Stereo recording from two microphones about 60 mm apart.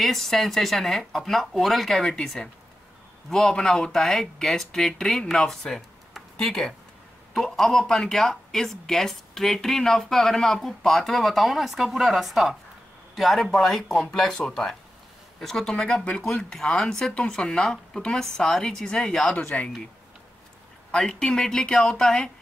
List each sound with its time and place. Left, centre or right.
0.0 s speech: centre
19.3 s speech: left
20.9 s speech: centre